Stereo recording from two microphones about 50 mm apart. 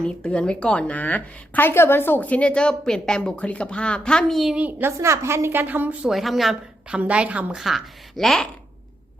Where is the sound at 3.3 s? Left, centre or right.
Left.